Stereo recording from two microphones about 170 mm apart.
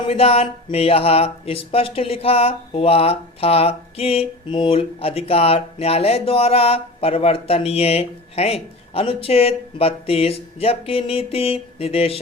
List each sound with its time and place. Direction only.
0.0 s speech: 35° left (ahead or behind)